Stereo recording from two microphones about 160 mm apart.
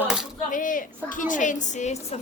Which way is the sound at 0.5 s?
55° left (ahead or behind).